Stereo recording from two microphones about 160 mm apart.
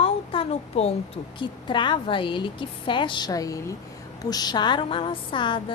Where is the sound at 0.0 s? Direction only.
35° left (ahead or behind).